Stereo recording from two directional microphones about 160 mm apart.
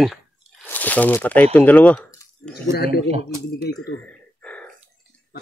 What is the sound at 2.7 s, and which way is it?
Speech, 80° left.